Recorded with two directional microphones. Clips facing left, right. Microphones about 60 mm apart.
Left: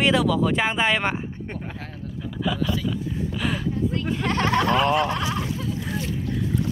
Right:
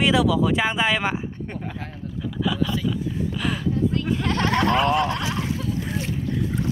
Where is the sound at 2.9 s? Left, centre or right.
Centre.